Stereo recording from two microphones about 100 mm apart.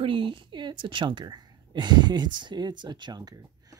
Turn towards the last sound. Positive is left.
turn(degrees=-45)  # may be behind; listen again after turning